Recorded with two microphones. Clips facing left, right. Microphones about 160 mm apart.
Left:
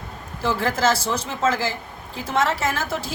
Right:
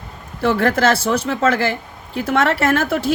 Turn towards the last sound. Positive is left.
turn(degrees=-60)  # may be behind; listen again after turning